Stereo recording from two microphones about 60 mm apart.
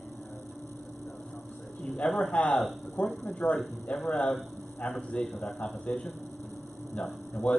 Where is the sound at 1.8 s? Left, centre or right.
Centre.